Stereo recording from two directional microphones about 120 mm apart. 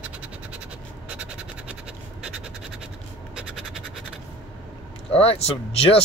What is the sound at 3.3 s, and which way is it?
Scratch, 5° right (ahead or behind).